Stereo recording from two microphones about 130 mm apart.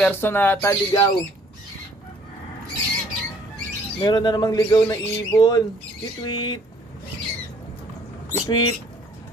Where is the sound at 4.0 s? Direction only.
35° left (ahead or behind).